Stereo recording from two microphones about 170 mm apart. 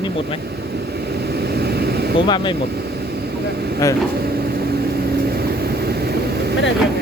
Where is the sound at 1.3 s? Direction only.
70° right (ahead or behind).